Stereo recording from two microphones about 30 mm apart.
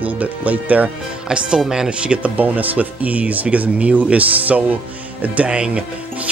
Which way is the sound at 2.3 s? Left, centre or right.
Right.